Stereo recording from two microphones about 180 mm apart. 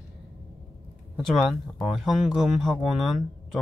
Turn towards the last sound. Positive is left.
turn(degrees=0)  # may be behind; listen again after turning